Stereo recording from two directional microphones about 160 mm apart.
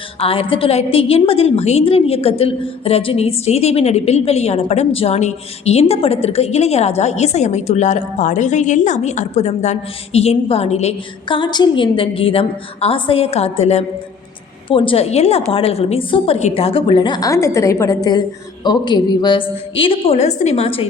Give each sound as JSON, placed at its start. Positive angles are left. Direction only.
{"t": 0.2, "sound": "a woman's voice", "side_deg": 35}